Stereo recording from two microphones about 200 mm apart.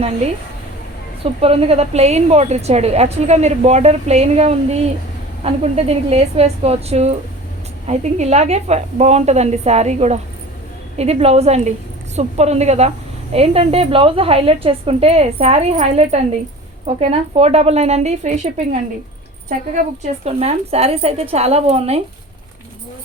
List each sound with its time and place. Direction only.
1.2 s a woman's voice: 30° right (ahead or behind)